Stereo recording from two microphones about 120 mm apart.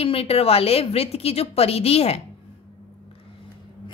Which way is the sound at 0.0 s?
55° left (ahead or behind).